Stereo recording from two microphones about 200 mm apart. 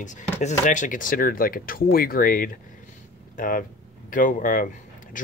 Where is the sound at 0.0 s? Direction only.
35° left (ahead or behind).